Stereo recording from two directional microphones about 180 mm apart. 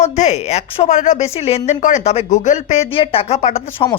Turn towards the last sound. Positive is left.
turn(degrees=35)  # may be behind; listen again after turning